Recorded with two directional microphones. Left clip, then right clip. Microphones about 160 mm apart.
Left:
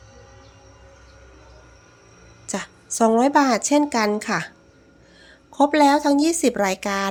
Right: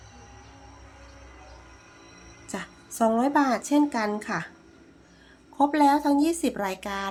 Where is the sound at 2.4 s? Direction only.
40° left (ahead or behind).